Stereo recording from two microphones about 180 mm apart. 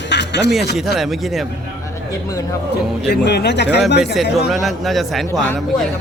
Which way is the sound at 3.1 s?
70° left (ahead or behind).